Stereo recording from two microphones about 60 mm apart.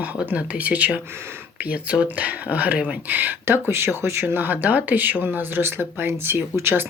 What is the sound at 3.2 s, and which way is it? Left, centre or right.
Speech, right.